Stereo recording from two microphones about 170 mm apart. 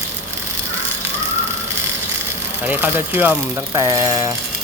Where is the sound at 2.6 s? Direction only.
10° right (ahead or behind).